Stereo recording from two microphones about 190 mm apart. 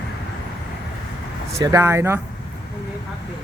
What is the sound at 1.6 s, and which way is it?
Speech, 15° right (ahead or behind).